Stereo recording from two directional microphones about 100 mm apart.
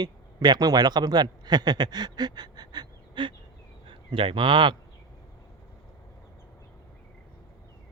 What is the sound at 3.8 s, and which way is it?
Speech, 60° right (ahead or behind).